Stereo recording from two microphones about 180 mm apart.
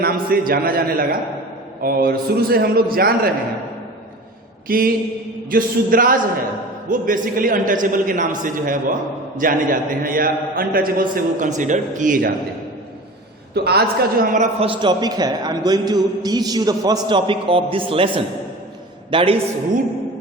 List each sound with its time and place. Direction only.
0.0 s a man's voice: 55° right (ahead or behind)
4.7 s a man's voice: 50° right (ahead or behind)
13.5 s a man's voice: 60° right (ahead or behind)
14.3 s a man's voice: 30° right (ahead or behind)